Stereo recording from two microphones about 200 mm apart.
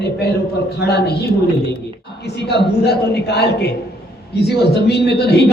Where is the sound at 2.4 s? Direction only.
55° left (ahead or behind).